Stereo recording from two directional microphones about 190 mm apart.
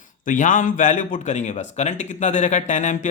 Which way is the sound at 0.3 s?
45° left (ahead or behind).